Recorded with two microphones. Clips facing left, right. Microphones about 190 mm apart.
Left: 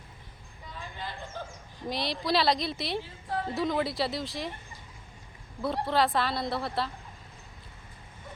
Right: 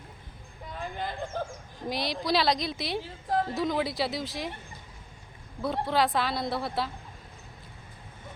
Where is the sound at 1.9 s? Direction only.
Centre (ahead or behind).